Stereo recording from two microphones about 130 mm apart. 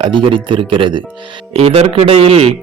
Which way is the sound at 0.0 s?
40° right (ahead or behind).